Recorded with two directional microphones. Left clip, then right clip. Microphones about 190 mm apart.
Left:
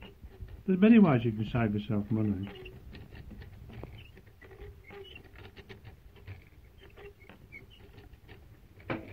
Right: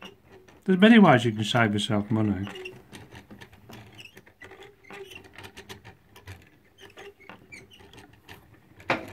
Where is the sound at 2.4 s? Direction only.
20° right (ahead or behind).